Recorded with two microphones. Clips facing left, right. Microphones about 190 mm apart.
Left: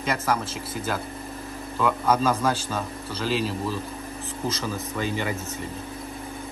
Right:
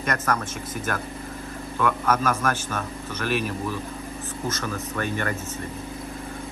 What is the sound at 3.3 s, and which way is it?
Speech, 90° left.